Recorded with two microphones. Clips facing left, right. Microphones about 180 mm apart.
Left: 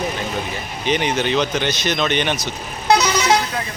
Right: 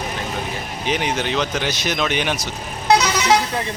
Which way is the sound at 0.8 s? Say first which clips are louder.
Left 3 dB; 5° right (ahead or behind).